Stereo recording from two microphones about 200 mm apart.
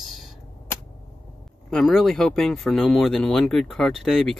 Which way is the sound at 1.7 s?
Centre (ahead or behind).